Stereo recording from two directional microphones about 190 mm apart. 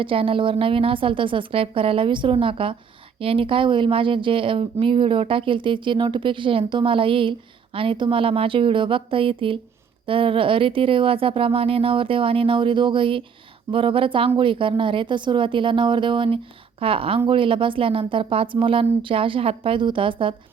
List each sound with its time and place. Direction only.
0.0 s a woman's voice: 30° right (ahead or behind)